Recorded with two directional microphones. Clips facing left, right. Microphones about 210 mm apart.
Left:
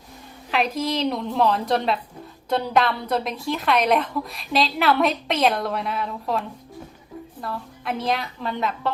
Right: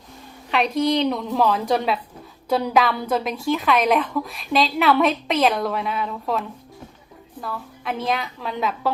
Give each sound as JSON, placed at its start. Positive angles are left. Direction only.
{"t": 0.5, "sound": "a woman's voice", "side_deg": 0}
{"t": 7.4, "sound": "a woman's voice", "side_deg": 0}